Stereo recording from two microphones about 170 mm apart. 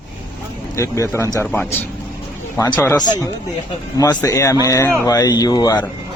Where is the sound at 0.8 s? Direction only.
15° left (ahead or behind).